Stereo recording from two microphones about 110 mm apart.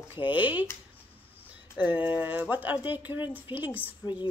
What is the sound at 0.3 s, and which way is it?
Speech, 15° right (ahead or behind).